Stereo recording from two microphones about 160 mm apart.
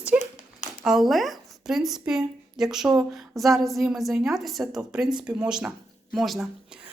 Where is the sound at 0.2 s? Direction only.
45° left (ahead or behind).